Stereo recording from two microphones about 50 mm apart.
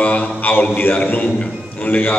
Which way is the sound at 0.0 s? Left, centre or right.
Left.